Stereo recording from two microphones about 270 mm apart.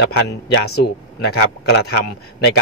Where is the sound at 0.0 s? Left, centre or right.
Left.